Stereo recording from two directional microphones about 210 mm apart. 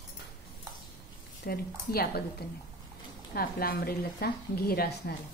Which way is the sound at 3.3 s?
45° left (ahead or behind).